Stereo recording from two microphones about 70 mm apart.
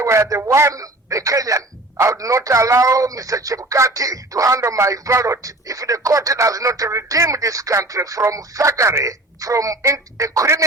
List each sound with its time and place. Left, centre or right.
0.0 s speech: right
9.0 s speech: right